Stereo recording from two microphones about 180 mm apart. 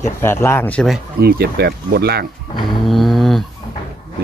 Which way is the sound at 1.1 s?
60° right (ahead or behind).